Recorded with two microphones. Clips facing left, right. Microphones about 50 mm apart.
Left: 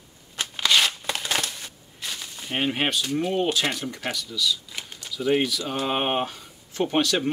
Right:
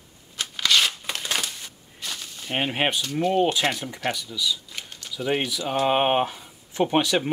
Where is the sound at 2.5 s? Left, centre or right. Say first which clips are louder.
Right 1 dB; centre.